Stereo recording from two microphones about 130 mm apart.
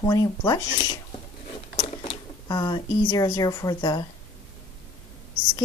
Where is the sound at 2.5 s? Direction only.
30° left (ahead or behind).